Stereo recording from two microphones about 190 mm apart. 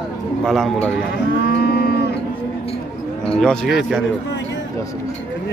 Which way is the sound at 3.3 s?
5° left (ahead or behind).